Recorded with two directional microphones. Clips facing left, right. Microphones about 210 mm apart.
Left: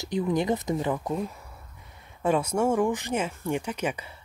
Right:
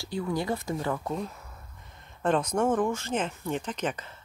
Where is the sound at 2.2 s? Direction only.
10° left (ahead or behind).